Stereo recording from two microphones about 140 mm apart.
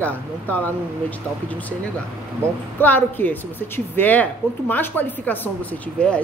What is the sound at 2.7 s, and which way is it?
A woman's voice, 15° left (ahead or behind).